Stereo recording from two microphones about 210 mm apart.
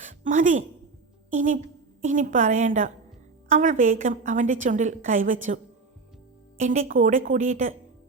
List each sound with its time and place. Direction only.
0.0 s a sound: 35° right (ahead or behind)
1.3 s a woman's voice: 35° right (ahead or behind)
6.6 s a woman's voice: 35° right (ahead or behind)